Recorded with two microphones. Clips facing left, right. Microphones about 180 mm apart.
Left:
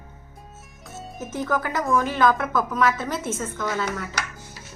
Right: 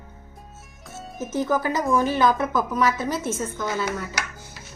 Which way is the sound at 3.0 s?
Centre (ahead or behind).